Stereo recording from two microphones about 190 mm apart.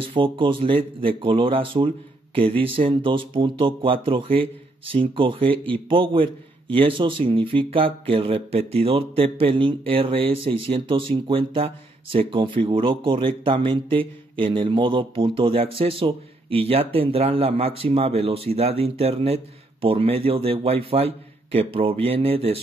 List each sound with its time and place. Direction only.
0.0 s speech: 25° right (ahead or behind)